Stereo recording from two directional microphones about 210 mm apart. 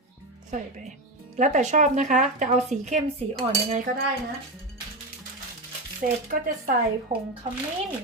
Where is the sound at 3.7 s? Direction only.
40° right (ahead or behind).